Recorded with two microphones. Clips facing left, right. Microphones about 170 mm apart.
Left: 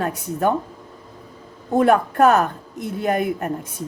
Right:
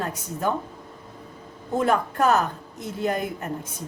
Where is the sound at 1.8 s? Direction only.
60° left (ahead or behind).